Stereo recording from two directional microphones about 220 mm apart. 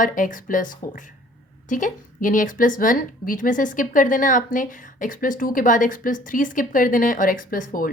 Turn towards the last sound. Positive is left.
turn(degrees=40)  # may be behind; listen again after turning